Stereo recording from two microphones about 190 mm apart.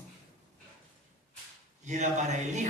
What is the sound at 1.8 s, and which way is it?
Speech, 40° right (ahead or behind).